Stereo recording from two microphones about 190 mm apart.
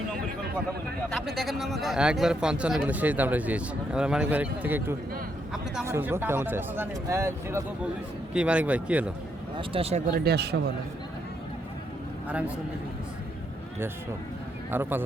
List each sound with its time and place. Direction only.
1.1 s speech: centre (ahead or behind)
9.6 s speech: 30° right (ahead or behind)
10.1 s speech: 60° right (ahead or behind)
12.3 s speech: 5° right (ahead or behind)
14.7 s speech: 10° right (ahead or behind)